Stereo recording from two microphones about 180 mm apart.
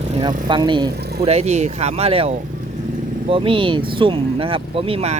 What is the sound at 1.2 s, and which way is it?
Speech, 35° right (ahead or behind).